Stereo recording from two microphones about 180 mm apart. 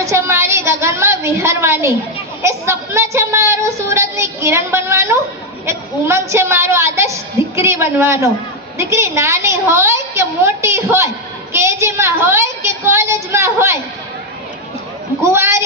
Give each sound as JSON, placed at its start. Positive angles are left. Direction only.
{"t": 0.0, "sound": "a woman's voice", "side_deg": -15}
{"t": 15.2, "sound": "a woman's voice", "side_deg": -15}